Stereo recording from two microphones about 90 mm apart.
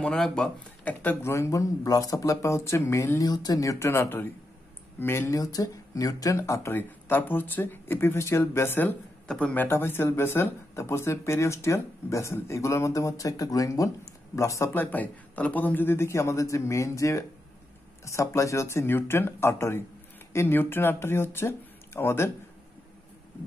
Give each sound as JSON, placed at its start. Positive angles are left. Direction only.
{"t": 0.0, "sound": "speech", "side_deg": 5}
{"t": 1.2, "sound": "speech", "side_deg": 30}
{"t": 9.3, "sound": "speech", "side_deg": 15}